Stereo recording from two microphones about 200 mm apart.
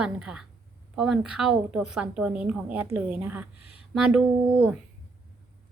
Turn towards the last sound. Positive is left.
turn(degrees=-5)  # may be behind; listen again after turning